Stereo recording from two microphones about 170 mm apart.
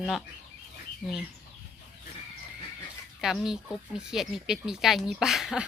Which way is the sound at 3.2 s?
5° right (ahead or behind).